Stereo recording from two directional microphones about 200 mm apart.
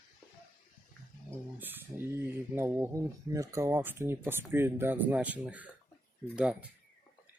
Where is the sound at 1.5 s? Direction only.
10° right (ahead or behind).